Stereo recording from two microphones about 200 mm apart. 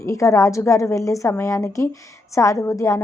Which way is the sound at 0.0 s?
15° left (ahead or behind).